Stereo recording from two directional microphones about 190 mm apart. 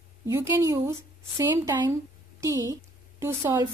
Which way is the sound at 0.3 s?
15° right (ahead or behind).